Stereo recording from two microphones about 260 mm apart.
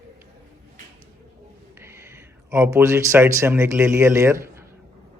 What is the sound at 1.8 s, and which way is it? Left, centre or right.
Speech, centre.